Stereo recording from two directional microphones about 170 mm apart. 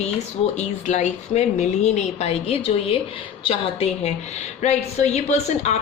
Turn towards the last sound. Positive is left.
turn(degrees=40)  # may be behind; listen again after turning